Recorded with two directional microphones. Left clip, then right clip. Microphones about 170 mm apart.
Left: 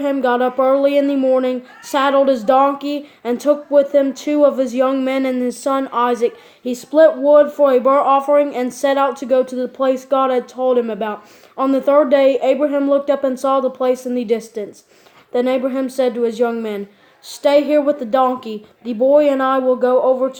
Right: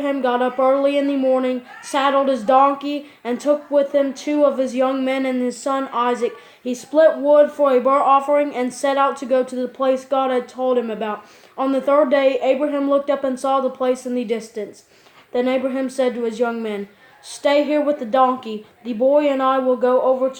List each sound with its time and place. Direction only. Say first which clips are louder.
0.0 s speech: left 3 dB; 45° left (ahead or behind)